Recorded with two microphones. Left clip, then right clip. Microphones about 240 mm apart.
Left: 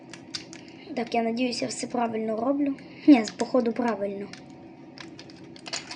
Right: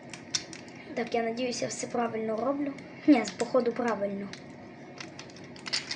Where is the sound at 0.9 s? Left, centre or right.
Centre.